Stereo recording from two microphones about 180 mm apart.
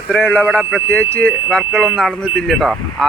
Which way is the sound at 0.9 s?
10° left (ahead or behind).